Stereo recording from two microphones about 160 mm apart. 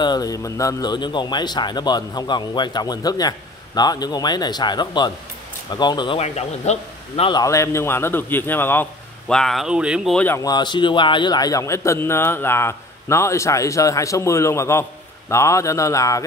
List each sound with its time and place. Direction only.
0.0 s a man's voice: 25° left (ahead or behind)
6.1 s a man's voice: 40° left (ahead or behind)
7.2 s a man's voice: 20° left (ahead or behind)
9.3 s speech: centre (ahead or behind)
10.1 s a man's voice: 15° left (ahead or behind)
10.4 s a man's voice: 25° left (ahead or behind)